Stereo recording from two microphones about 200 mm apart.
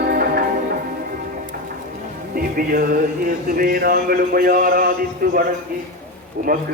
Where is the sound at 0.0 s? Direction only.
50° right (ahead or behind).